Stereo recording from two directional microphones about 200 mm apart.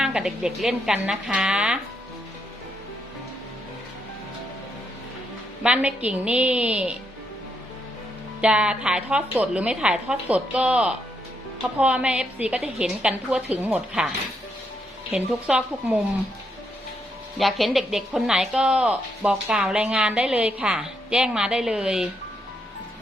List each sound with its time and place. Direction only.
0.0 s a woman's voice: 5° right (ahead or behind)
5.6 s a woman's voice: 5° right (ahead or behind)
8.4 s a woman's voice: 5° right (ahead or behind)
15.1 s a woman's voice: 5° right (ahead or behind)
17.3 s a woman's voice: centre (ahead or behind)